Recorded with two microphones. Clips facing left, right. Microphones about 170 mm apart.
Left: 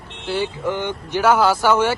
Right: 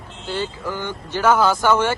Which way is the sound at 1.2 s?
10° left (ahead or behind).